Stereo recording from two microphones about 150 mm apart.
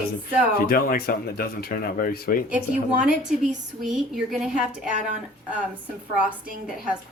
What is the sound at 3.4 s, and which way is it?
Speech, centre (ahead or behind).